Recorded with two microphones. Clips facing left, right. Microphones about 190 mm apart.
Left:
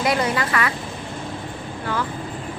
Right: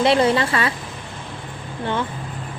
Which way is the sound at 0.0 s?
30° right (ahead or behind).